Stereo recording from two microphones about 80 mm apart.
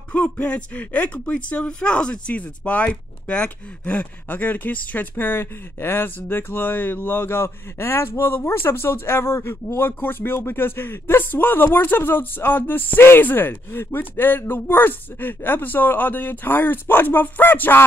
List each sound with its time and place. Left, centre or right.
0.1 s speech: centre